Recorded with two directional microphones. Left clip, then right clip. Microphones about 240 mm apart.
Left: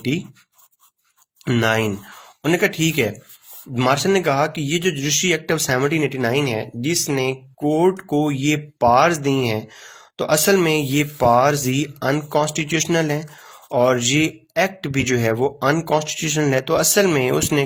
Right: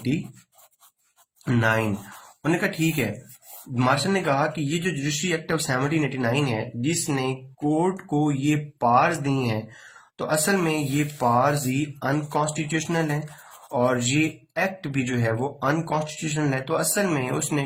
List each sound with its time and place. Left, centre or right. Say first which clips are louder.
1.5 s speech: left 4 dB; left